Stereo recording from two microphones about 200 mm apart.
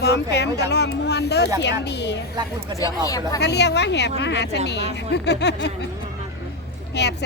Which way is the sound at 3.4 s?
55° left (ahead or behind).